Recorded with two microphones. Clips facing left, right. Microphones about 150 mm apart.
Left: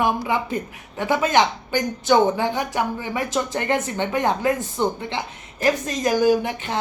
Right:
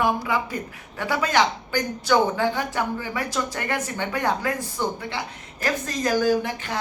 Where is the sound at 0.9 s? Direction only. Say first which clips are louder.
Left 3 dB; 20° left (ahead or behind).